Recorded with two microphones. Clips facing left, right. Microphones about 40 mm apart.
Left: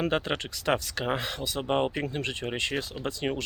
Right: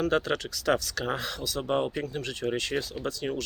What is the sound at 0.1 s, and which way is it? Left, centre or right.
Speech, left.